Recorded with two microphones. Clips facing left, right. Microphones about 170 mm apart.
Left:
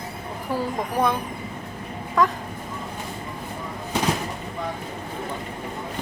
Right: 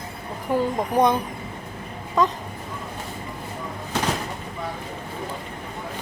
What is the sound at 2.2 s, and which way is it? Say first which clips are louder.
Speech: even; 20° right (ahead or behind).